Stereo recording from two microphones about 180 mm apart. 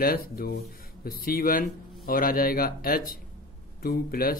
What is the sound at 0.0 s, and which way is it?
Speech, 55° left (ahead or behind).